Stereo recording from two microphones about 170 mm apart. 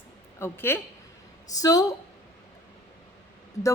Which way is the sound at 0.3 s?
15° left (ahead or behind).